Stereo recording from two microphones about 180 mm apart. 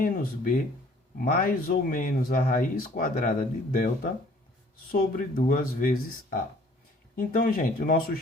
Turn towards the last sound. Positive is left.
turn(degrees=50)  # may be behind; listen again after turning